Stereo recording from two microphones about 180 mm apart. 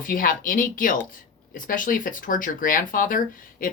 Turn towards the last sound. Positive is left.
turn(degrees=50)  # may be behind; listen again after turning